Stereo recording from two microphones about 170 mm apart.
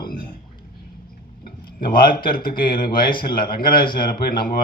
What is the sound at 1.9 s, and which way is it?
Speech, 30° left (ahead or behind).